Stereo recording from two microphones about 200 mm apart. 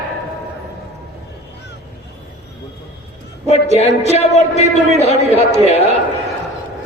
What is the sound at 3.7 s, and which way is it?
A man's voice, 30° left (ahead or behind).